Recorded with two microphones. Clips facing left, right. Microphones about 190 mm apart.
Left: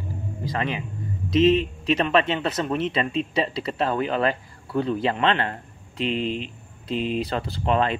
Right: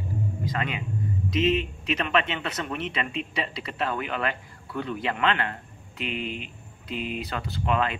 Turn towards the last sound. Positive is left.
turn(degrees=35)  # may be behind; listen again after turning